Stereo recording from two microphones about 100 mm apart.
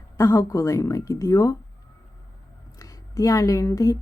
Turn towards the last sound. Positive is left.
turn(degrees=30)  # may be behind; listen again after turning